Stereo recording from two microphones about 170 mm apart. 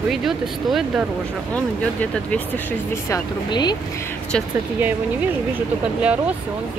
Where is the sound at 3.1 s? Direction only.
25° left (ahead or behind).